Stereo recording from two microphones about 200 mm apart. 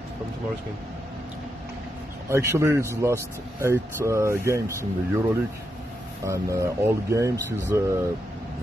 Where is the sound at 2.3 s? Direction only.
15° right (ahead or behind).